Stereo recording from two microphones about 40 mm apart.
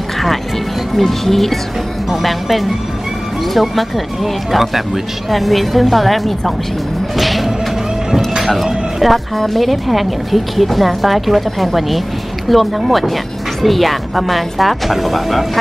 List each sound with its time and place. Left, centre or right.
0.9 s speech: centre
8.4 s music: centre
9.0 s speech: centre